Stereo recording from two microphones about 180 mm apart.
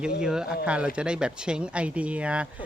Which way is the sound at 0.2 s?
5° right (ahead or behind).